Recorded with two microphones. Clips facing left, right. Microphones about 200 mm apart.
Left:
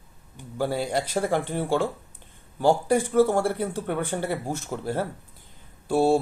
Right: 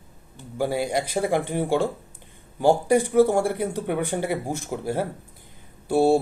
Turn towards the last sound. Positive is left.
turn(degrees=-15)  # may be behind; listen again after turning